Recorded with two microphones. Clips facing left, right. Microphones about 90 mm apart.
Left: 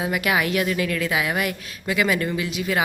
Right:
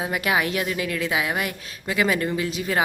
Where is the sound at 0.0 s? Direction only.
30° right (ahead or behind).